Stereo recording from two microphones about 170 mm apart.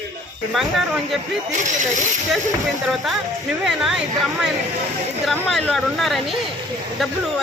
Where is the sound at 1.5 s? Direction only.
45° right (ahead or behind).